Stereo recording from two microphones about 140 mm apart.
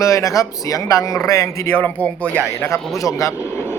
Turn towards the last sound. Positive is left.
turn(degrees=20)  # may be behind; listen again after turning